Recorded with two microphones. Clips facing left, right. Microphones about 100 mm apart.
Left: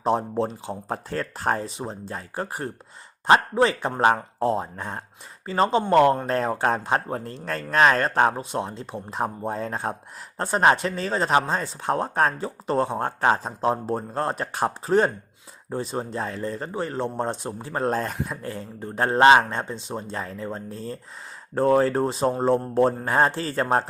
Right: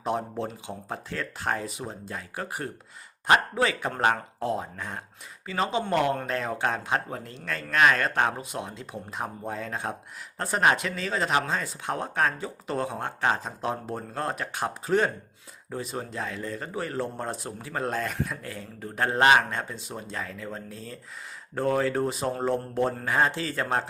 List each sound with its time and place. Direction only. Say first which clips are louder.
0.0 s speech: left 6 dB; 35° left (ahead or behind)